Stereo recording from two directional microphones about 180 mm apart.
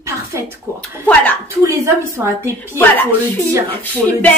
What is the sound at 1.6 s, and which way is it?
Speech, 15° right (ahead or behind).